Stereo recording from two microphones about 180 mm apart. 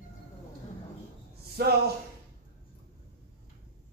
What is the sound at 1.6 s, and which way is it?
Speech, 60° right (ahead or behind).